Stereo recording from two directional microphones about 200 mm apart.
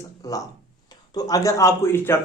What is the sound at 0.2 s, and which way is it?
Speech, 15° left (ahead or behind).